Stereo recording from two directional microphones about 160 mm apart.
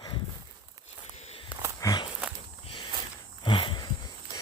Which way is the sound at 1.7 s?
20° left (ahead or behind).